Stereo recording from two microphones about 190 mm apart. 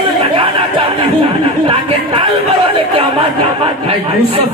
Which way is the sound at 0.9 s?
30° right (ahead or behind).